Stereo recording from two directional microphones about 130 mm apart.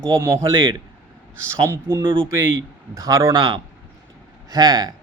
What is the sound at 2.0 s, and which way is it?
Speech, 40° right (ahead or behind).